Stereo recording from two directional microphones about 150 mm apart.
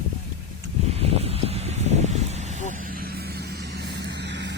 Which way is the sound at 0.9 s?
40° right (ahead or behind).